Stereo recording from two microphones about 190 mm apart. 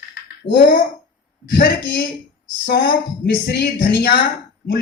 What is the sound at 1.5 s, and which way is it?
A woman's voice, 60° left (ahead or behind).